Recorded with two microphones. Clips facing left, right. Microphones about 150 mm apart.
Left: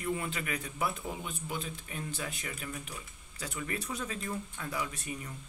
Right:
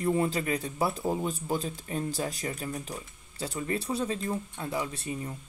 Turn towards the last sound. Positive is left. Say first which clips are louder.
# right 5 dB
turn(degrees=-30)  # may be behind; listen again after turning